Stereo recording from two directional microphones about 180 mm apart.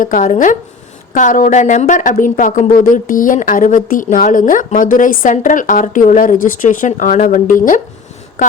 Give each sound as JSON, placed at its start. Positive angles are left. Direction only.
{"t": 0.0, "sound": "speech", "side_deg": 45}